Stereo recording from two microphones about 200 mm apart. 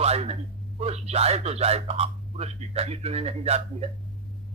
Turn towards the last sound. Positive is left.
turn(degrees=-30)  # may be behind; listen again after turning